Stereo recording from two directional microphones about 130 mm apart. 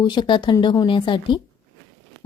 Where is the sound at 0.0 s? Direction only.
35° left (ahead or behind).